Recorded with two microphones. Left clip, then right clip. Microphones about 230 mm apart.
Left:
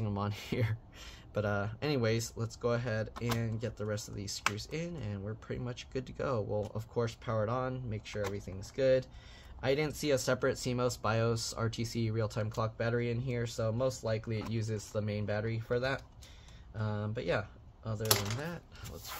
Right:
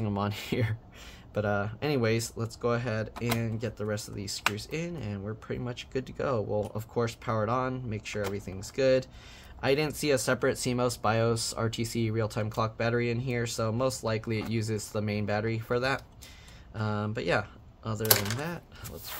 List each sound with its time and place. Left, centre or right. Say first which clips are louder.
0.0 s speech: right 6 dB; centre